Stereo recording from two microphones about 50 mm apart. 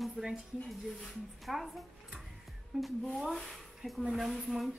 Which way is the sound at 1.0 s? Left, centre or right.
Centre.